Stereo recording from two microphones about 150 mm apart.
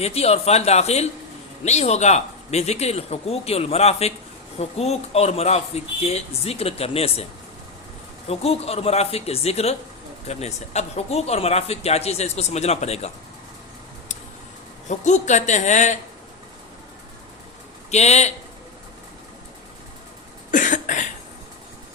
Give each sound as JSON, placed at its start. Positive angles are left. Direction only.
{"t": 0.0, "sound": "speech", "side_deg": 45}
{"t": 8.3, "sound": "speech", "side_deg": 40}
{"t": 14.8, "sound": "speech", "side_deg": 50}
{"t": 17.9, "sound": "speech", "side_deg": 50}
{"t": 20.5, "sound": "cough", "side_deg": 60}